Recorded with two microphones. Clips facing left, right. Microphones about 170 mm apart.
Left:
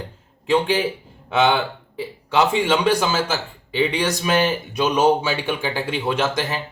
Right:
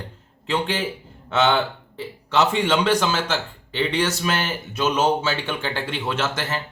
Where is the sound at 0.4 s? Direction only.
10° left (ahead or behind).